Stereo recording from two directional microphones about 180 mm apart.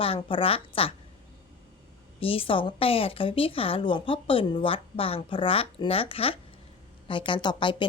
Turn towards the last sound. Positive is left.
turn(degrees=25)  # may be behind; listen again after turning